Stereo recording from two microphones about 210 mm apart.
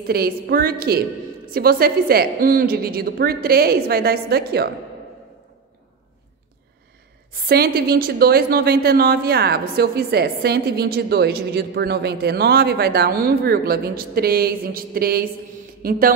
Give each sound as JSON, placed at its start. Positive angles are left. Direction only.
{"t": 0.0, "sound": "a woman's voice", "side_deg": -45}
{"t": 7.4, "sound": "a woman's voice", "side_deg": -50}